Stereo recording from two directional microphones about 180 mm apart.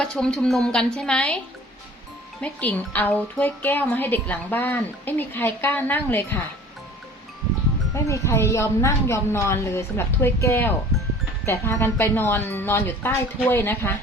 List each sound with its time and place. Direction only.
0.0 s a woman's voice: 5° left (ahead or behind)
2.4 s speech: 10° left (ahead or behind)
7.9 s speech: 15° left (ahead or behind)